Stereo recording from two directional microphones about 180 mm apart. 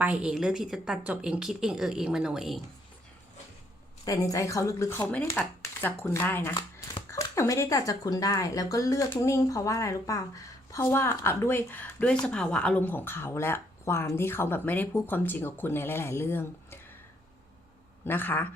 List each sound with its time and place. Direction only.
0.0 s a woman's voice: 5° right (ahead or behind)
4.0 s speech: 20° left (ahead or behind)
18.0 s speech: 10° left (ahead or behind)